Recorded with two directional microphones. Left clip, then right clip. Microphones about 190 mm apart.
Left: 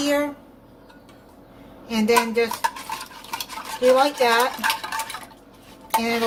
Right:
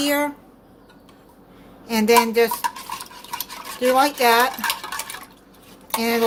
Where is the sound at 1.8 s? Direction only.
45° right (ahead or behind).